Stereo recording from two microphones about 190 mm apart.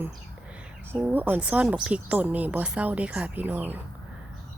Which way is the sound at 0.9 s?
10° right (ahead or behind).